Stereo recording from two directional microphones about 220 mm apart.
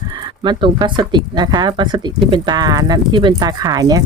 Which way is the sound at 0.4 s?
20° right (ahead or behind).